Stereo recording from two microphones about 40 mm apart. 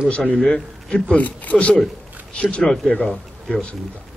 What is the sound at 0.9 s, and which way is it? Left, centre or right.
A man's voice, left.